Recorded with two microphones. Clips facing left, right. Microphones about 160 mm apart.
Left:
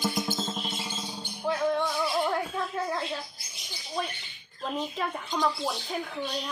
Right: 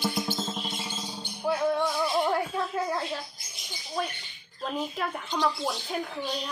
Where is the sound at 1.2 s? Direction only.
10° right (ahead or behind).